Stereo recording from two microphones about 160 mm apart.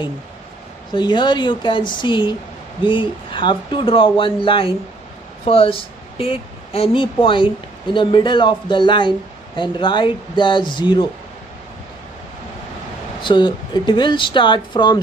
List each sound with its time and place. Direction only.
0.9 s a woman's voice: 30° left (ahead or behind)
13.2 s speech: 30° left (ahead or behind)